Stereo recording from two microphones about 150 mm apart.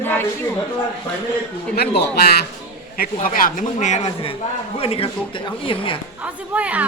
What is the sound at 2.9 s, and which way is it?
Speech, 70° left (ahead or behind).